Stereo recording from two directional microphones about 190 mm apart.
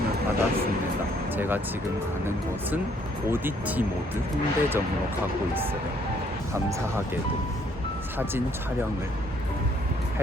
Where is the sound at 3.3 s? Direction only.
10° right (ahead or behind).